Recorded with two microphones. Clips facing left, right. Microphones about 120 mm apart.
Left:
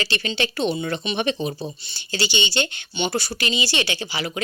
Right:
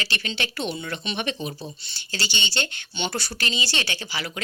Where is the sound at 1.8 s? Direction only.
15° left (ahead or behind).